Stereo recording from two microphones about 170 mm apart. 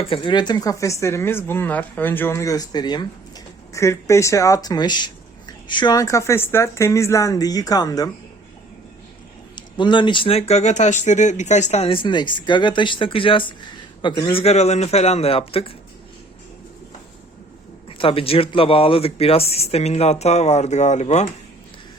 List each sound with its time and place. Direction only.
0.0 s speech: 30° left (ahead or behind)
9.6 s speech: 25° left (ahead or behind)
17.8 s speech: 30° left (ahead or behind)